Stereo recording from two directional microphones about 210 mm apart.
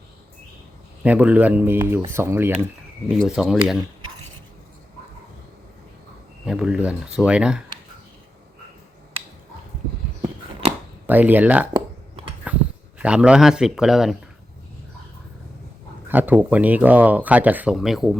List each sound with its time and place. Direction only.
1.0 s speech: 5° right (ahead or behind)
3.1 s speech: centre (ahead or behind)
6.4 s speech: 5° right (ahead or behind)
11.0 s speech: 10° right (ahead or behind)
12.5 s a sound: 5° right (ahead or behind)
13.0 s speech: 5° right (ahead or behind)
16.0 s speech: 10° right (ahead or behind)